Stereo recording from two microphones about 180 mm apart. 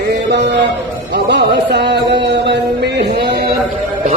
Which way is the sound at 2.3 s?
70° right (ahead or behind).